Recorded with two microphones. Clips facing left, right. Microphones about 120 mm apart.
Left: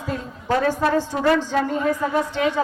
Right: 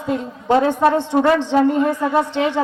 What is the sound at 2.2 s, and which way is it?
Speech, 25° right (ahead or behind).